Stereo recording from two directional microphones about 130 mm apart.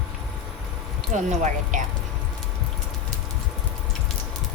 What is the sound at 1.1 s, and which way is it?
Speech, 80° right.